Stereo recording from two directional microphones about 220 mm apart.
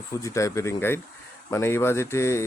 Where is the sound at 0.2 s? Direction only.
15° left (ahead or behind).